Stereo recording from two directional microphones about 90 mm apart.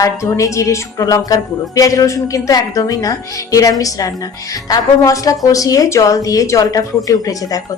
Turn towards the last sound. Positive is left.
turn(degrees=40)  # may be behind; listen again after turning